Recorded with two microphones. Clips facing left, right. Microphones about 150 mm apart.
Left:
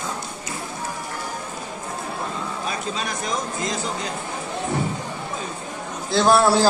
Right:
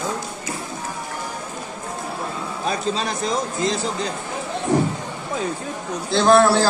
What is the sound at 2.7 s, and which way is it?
Speech, 30° right (ahead or behind).